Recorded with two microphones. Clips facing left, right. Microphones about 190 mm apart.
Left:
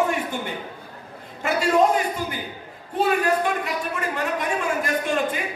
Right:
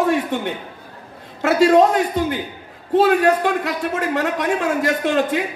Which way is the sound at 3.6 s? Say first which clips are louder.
Right 5 dB; 85° right.